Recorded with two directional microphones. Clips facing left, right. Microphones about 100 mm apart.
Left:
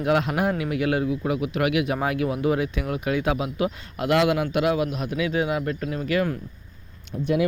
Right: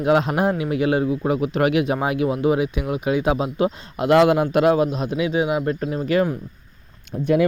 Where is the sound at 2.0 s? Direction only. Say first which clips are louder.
Right 4 dB; 20° right (ahead or behind).